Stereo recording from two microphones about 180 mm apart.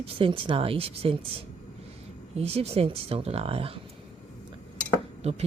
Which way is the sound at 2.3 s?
35° right (ahead or behind).